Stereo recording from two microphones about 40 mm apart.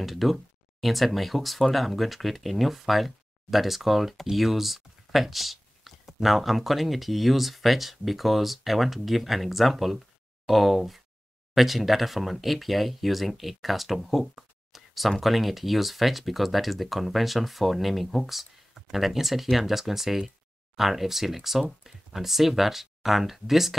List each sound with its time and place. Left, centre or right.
0.0 s speech: centre